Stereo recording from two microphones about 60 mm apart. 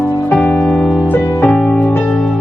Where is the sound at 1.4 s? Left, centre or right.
Left.